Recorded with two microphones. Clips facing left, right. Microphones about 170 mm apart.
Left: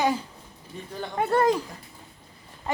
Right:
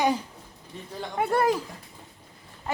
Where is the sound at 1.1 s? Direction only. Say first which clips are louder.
Left 2 dB; 10° right (ahead or behind).